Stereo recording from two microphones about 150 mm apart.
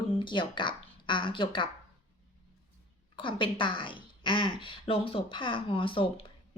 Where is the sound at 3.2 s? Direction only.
35° left (ahead or behind).